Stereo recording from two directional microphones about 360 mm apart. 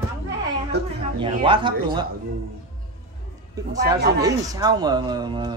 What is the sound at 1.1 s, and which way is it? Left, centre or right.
Speech, centre.